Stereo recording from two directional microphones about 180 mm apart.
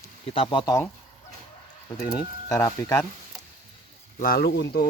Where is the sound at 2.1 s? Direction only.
20° left (ahead or behind).